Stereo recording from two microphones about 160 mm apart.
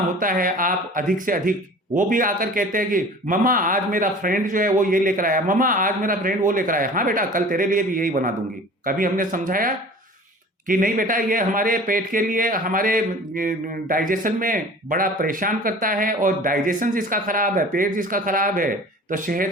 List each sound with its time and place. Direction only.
0.2 s a man's voice: 60° right (ahead or behind)